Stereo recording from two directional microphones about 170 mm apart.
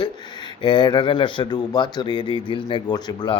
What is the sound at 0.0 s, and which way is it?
Speech, 25° left (ahead or behind).